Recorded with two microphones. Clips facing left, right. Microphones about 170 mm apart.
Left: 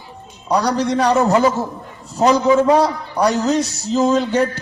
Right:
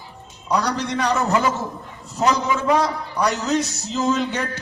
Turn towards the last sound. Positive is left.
turn(degrees=35)  # may be behind; listen again after turning